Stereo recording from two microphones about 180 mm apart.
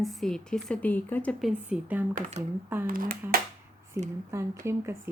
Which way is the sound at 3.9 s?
15° right (ahead or behind).